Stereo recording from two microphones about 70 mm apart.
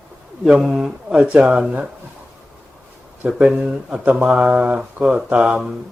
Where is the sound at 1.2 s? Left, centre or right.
Right.